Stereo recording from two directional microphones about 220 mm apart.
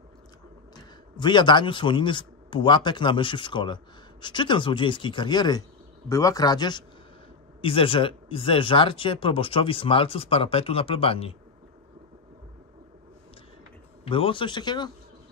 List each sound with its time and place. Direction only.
0.7 s a man's voice: 20° left (ahead or behind)
14.0 s speech: 25° left (ahead or behind)